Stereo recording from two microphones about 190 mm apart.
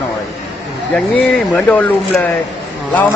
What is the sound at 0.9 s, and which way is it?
A man's voice, 5° left (ahead or behind).